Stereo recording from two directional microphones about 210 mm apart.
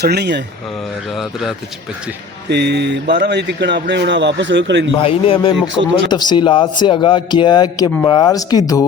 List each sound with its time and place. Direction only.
0.0 s speech: 50° right (ahead or behind)
1.1 s a man's voice: centre (ahead or behind)
2.5 s speech: 55° right (ahead or behind)
4.9 s speech: 25° left (ahead or behind)